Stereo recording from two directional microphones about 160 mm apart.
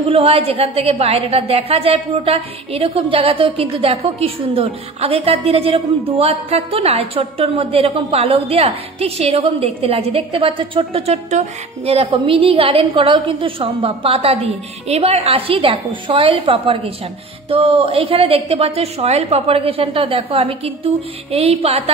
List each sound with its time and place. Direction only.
0.0 s a woman's voice: 35° right (ahead or behind)